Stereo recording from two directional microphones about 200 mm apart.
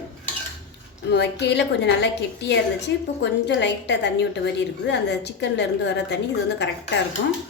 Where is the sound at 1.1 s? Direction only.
55° left (ahead or behind).